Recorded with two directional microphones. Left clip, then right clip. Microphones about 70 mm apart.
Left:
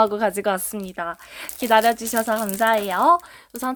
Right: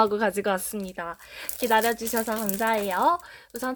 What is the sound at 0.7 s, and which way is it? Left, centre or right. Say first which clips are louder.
Speech: left 5 dB; left.